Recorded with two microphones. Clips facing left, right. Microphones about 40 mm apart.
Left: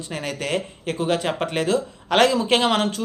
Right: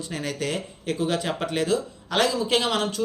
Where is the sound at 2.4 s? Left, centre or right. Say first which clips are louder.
Left 4 dB; left.